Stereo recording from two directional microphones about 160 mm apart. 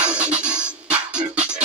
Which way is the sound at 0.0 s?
5° right (ahead or behind).